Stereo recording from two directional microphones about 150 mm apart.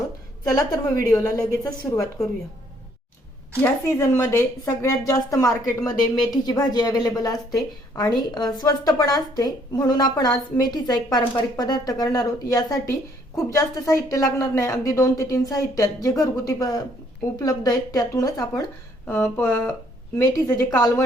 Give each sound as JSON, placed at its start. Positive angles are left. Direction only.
{"t": 0.4, "sound": "speech", "side_deg": 25}
{"t": 3.6, "sound": "speech", "side_deg": 20}